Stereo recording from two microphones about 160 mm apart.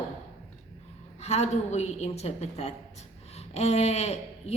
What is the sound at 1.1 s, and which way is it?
Speech, 45° left (ahead or behind).